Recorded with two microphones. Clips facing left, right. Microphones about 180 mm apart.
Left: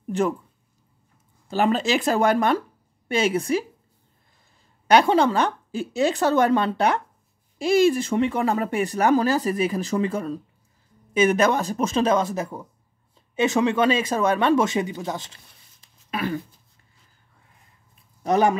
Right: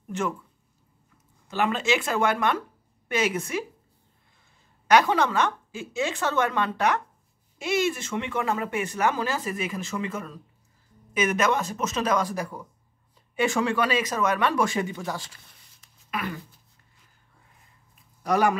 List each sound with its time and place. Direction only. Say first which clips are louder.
0.1 s speech: left 6 dB; 35° left (ahead or behind)
1.5 s speech: left 4 dB; 35° left (ahead or behind)
4.8 s speech: left 3 dB; 30° left (ahead or behind)
18.2 s speech: left 3 dB; 25° left (ahead or behind)